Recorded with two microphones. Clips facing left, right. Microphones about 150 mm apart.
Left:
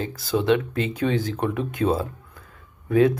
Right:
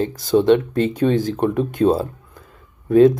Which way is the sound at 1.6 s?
35° right (ahead or behind).